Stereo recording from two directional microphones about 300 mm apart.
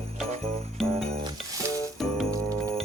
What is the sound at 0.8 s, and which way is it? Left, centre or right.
Jingle bell, centre.